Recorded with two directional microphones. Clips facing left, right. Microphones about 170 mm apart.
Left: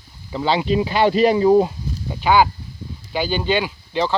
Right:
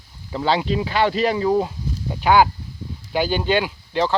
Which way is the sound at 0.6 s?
10° left (ahead or behind).